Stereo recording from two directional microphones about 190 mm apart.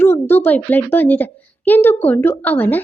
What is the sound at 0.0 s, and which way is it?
A woman's voice, 10° left (ahead or behind).